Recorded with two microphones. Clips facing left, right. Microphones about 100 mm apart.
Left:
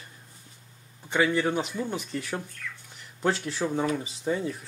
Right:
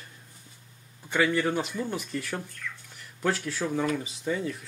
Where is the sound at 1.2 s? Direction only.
5° left (ahead or behind).